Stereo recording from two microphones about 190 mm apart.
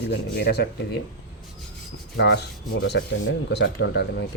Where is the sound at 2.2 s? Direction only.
60° left (ahead or behind).